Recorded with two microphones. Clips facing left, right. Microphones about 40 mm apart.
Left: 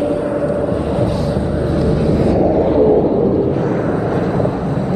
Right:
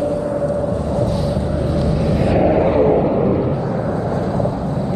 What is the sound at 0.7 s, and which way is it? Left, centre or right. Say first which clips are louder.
Vehicle: left 3 dB; left.